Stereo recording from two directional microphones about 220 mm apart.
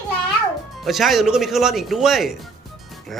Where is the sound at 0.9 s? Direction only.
Centre (ahead or behind).